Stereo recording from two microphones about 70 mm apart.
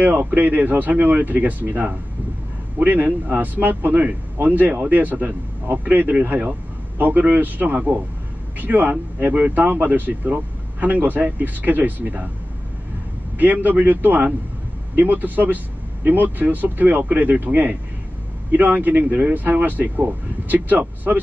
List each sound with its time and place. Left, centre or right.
0.0 s speech: right
13.4 s speech: right